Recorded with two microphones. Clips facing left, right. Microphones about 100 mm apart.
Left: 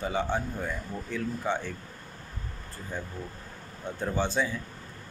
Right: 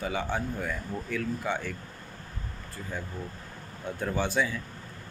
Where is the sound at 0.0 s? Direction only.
30° left (ahead or behind).